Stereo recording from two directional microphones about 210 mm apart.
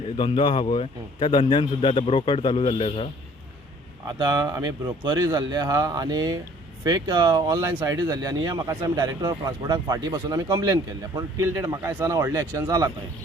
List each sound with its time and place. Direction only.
0.2 s a man's voice: 25° left (ahead or behind)
4.0 s speech: 15° right (ahead or behind)